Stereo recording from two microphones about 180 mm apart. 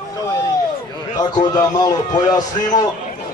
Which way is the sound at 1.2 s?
20° left (ahead or behind).